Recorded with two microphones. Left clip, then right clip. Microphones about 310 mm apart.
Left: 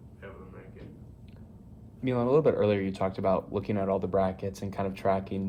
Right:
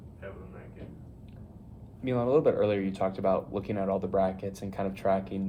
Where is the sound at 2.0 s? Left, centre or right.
Left.